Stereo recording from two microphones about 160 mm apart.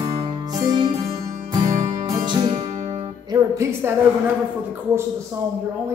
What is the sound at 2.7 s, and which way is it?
Music, 45° right (ahead or behind).